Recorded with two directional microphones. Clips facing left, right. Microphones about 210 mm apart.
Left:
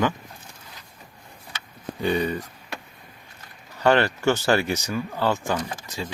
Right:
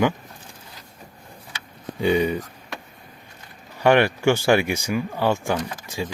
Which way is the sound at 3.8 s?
15° right (ahead or behind).